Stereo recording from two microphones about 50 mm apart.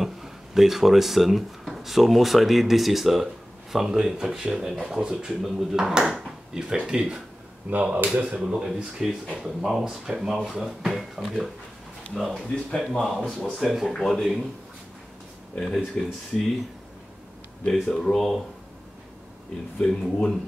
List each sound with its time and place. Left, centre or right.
0.0 s speech: centre
7.7 s speech: right
8.4 s speech: centre
15.5 s speech: centre
18.0 s speech: centre
19.8 s speech: centre